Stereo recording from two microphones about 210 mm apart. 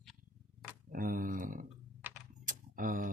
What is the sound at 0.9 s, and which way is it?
Speech, 40° right (ahead or behind).